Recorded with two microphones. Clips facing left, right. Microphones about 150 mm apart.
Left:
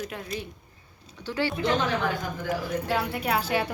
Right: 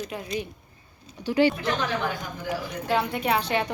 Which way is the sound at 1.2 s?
15° right (ahead or behind).